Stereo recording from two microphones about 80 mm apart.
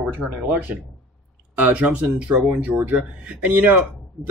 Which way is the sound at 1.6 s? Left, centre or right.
Centre.